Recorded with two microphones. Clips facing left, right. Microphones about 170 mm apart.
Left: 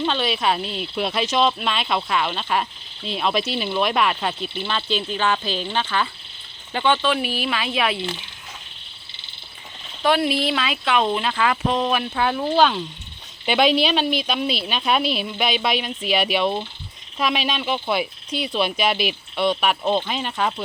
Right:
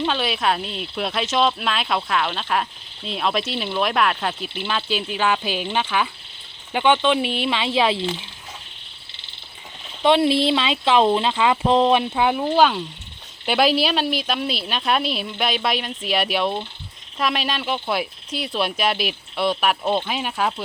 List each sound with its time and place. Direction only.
0.0 s speech: centre (ahead or behind); by 8.0 s 25° right (ahead or behind)
10.0 s speech: 25° right (ahead or behind); by 20.5 s 5° right (ahead or behind)